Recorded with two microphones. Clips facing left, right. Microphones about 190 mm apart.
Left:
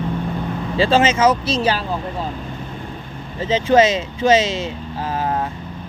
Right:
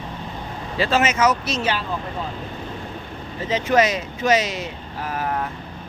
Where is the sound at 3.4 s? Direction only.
25° left (ahead or behind).